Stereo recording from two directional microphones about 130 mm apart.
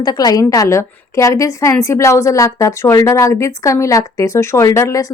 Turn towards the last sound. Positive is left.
turn(degrees=25)  # may be behind; listen again after turning